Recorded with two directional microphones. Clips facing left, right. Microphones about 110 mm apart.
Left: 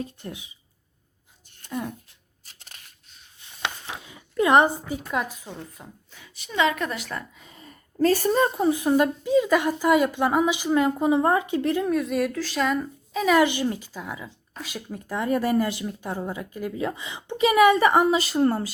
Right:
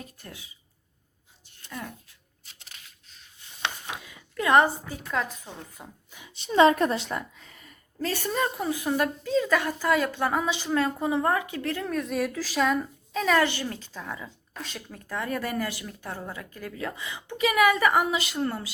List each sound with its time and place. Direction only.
0.0 s speech: 20° left (ahead or behind)
1.7 s speech: 20° left (ahead or behind)
2.4 s a sound: 45° left (ahead or behind)
3.9 s speech: 25° left (ahead or behind)
5.5 s speech: centre (ahead or behind)
6.1 s a sound: 15° right (ahead or behind)
6.4 s a woman's voice: 35° right (ahead or behind)
7.4 s a sound: 25° left (ahead or behind)
7.7 s speech: 40° left (ahead or behind); by 11.9 s 15° left (ahead or behind)
11.9 s speech: centre (ahead or behind); by 18.7 s 40° left (ahead or behind)